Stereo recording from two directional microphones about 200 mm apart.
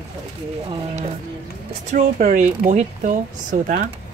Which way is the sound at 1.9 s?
40° right (ahead or behind).